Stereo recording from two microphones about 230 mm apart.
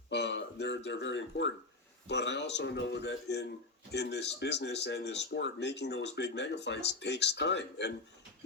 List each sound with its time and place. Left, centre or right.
0.1 s speech: left